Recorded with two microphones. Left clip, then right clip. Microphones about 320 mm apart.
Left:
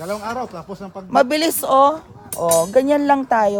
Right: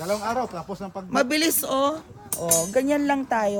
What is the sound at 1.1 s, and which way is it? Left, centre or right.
Speech, centre.